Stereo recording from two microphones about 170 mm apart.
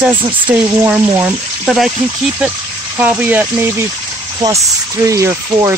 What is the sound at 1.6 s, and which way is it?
Speech, centre (ahead or behind).